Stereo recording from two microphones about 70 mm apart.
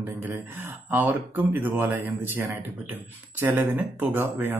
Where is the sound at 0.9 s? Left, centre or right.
Right.